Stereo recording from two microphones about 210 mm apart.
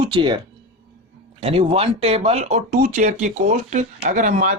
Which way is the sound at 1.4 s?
25° right (ahead or behind).